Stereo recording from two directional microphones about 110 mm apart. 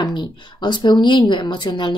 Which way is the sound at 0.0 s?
45° left (ahead or behind).